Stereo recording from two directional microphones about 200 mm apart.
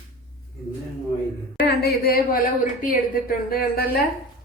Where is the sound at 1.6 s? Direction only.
50° left (ahead or behind).